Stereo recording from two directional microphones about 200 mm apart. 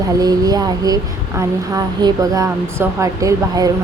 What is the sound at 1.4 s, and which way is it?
Speech, 20° right (ahead or behind).